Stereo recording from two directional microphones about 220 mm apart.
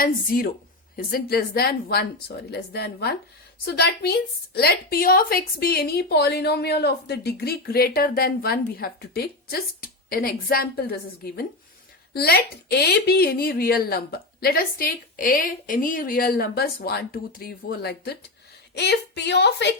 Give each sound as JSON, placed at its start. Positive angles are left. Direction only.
{"t": 0.0, "sound": "a woman's voice", "side_deg": 40}